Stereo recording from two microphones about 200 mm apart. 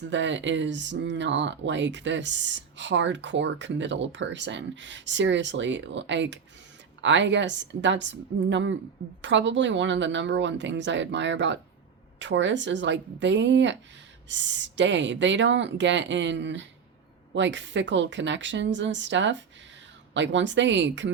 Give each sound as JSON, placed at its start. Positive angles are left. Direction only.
{"t": 0.1, "sound": "speech", "side_deg": -65}